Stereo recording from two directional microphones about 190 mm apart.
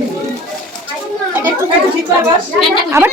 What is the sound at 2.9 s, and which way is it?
Speech, 10° right (ahead or behind).